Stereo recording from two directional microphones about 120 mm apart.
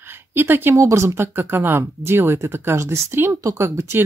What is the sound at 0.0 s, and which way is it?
Speech, 20° right (ahead or behind).